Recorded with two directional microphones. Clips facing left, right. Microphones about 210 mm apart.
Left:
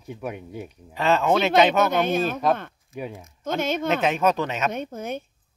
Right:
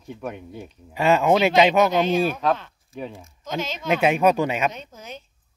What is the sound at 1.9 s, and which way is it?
Speech, 55° left (ahead or behind).